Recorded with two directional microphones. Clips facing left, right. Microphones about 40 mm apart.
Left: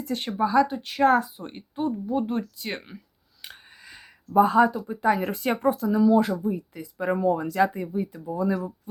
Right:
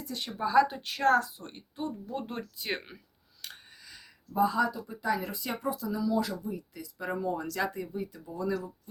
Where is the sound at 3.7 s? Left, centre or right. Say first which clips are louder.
Left 5 dB; left.